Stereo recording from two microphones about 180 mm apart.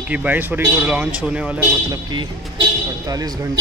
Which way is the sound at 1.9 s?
25° right (ahead or behind).